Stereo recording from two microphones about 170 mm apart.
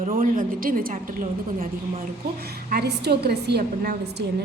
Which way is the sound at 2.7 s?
70° right (ahead or behind).